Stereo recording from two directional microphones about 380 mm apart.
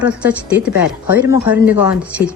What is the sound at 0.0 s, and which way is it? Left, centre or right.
Speech, centre.